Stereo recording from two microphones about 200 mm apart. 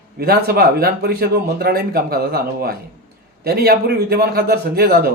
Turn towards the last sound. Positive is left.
turn(degrees=-50)  # may be behind; listen again after turning